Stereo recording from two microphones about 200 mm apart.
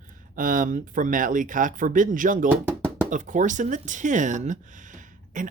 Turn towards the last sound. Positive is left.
turn(degrees=-40)  # may be behind; listen again after turning